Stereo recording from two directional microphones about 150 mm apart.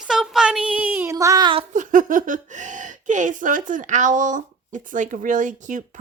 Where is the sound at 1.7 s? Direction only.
60° right (ahead or behind).